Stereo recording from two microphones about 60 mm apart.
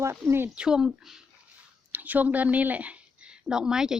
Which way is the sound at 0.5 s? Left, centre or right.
Centre.